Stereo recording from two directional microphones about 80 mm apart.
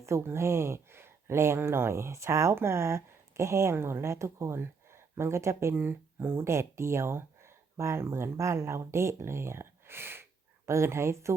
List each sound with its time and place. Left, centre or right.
0.0 s speech: right